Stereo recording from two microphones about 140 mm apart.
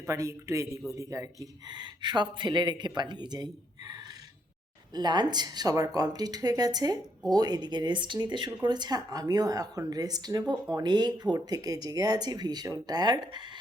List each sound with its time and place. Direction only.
0.1 s speech: 20° right (ahead or behind)
4.9 s speech: 30° right (ahead or behind)
10.4 s speech: 5° right (ahead or behind)
10.8 s speech: 30° right (ahead or behind)